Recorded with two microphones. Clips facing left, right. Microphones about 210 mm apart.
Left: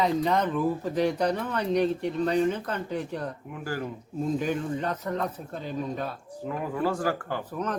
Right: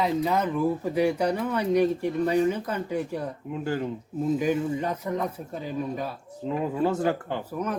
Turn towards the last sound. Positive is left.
turn(degrees=-10)  # may be behind; listen again after turning